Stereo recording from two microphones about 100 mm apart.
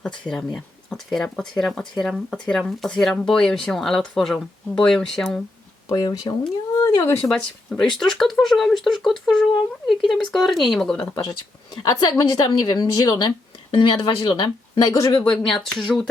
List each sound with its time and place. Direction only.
0.3 s speech: 5° left (ahead or behind)
5.9 s speech: 40° left (ahead or behind)
6.8 s speech: 30° left (ahead or behind)
7.3 s speech: 5° left (ahead or behind)
11.8 s speech: 40° left (ahead or behind)
14.8 s speech: 30° left (ahead or behind)
15.2 s speech: 5° left (ahead or behind)